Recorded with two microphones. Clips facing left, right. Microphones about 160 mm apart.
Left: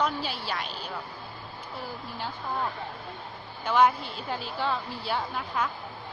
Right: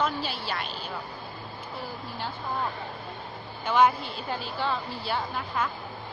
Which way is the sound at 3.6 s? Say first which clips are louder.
Even; 5° right (ahead or behind).